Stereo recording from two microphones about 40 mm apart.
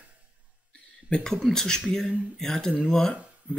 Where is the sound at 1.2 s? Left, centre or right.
Centre.